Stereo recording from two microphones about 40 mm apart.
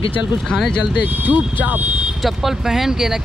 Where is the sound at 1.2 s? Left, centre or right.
Right.